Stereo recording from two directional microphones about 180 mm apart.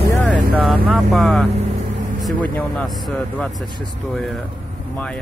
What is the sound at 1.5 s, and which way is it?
Vehicle, 40° right (ahead or behind).